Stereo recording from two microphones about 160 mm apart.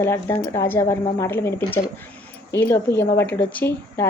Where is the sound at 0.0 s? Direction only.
15° left (ahead or behind).